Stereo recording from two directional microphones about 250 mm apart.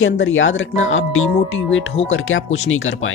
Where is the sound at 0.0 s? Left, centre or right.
Left.